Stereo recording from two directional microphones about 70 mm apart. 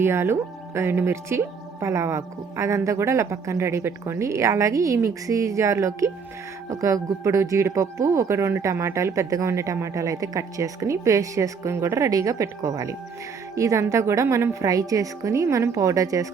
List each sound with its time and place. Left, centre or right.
0.0 s speech: right